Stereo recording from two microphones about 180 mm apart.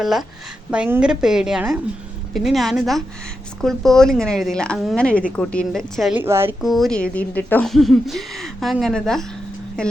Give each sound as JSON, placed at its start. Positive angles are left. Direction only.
{"t": 0.0, "sound": "speech", "side_deg": 0}
{"t": 6.1, "sound": "speech", "side_deg": -15}
{"t": 6.6, "sound": "speech", "side_deg": 0}